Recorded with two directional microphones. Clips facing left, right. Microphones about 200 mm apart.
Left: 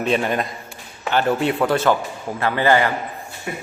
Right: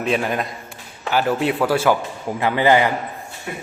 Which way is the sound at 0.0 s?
Centre (ahead or behind).